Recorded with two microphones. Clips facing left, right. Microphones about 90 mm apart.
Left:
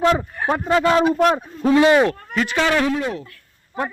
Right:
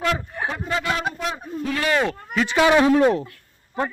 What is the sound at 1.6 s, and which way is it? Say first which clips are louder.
Speech: left 9 dB; 20° left (ahead or behind).